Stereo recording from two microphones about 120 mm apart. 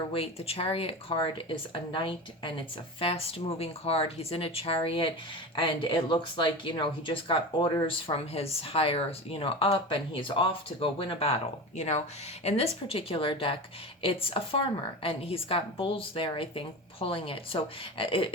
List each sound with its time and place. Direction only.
0.1 s speech: 55° left (ahead or behind)
11.8 s speech: 70° left (ahead or behind); by 18.3 s 50° left (ahead or behind)